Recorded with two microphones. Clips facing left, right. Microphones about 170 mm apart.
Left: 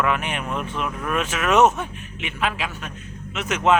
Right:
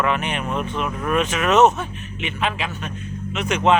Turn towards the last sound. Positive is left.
turn(degrees=5)  # may be behind; listen again after turning